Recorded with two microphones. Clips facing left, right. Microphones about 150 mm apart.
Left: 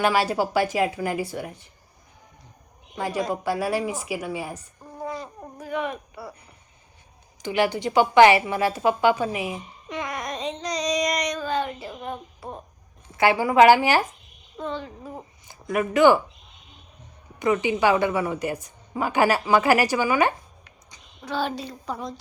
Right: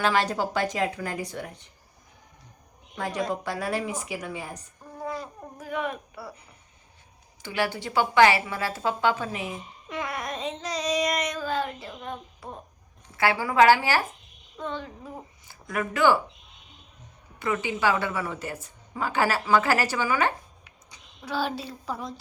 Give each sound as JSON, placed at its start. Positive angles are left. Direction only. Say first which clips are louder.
{"t": 0.0, "sound": "a woman's voice", "louder": "left 3 dB", "side_deg": 10}
{"t": 3.0, "sound": "a woman's voice", "louder": "left 3 dB", "side_deg": 5}
{"t": 7.4, "sound": "a woman's voice", "louder": "left 6 dB", "side_deg": 20}
{"t": 9.9, "sound": "child singing", "louder": "left 2 dB", "side_deg": -5}
{"t": 13.1, "sound": "a woman's voice", "louder": "left 4 dB", "side_deg": 20}
{"t": 14.6, "sound": "speech", "louder": "left 3 dB", "side_deg": 0}
{"t": 15.4, "sound": "speech", "louder": "left 5 dB", "side_deg": 20}
{"t": 17.4, "sound": "a woman's voice", "louder": "left 5 dB", "side_deg": 20}
{"t": 20.7, "sound": "speech", "louder": "left 1 dB", "side_deg": -5}